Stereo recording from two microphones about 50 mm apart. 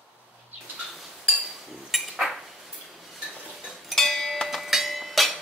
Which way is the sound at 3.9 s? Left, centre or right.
Centre.